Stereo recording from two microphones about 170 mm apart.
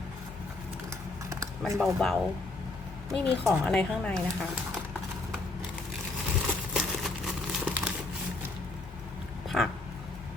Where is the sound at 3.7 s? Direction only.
5° left (ahead or behind).